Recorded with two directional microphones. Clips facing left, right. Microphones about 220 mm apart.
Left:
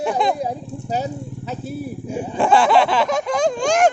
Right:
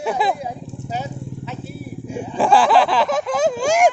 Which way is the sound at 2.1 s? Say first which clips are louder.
Even; centre (ahead or behind).